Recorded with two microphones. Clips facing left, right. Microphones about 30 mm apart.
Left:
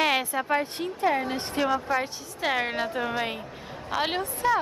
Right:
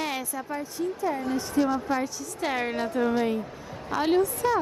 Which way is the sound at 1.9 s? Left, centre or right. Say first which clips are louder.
Even; left.